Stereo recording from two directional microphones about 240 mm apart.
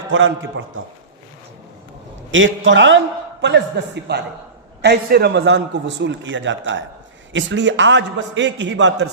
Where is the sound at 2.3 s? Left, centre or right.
Right.